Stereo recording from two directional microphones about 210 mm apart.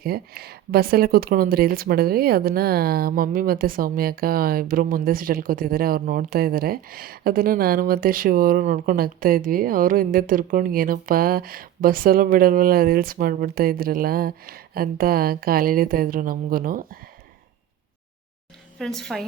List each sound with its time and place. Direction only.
0.0 s speech: 45° right (ahead or behind)
18.8 s a woman's voice: centre (ahead or behind)